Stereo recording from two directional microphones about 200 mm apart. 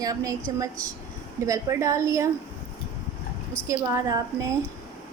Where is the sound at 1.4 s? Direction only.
15° right (ahead or behind).